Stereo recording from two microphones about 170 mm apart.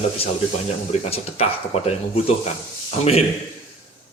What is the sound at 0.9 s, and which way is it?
Speech, 35° left (ahead or behind).